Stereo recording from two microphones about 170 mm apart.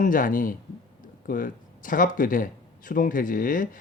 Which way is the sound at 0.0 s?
50° left (ahead or behind).